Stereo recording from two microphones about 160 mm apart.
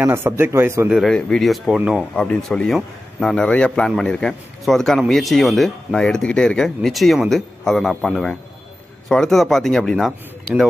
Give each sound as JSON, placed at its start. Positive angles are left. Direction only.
{"t": 0.0, "sound": "speech", "side_deg": -15}
{"t": 0.8, "sound": "a man's voice", "side_deg": 0}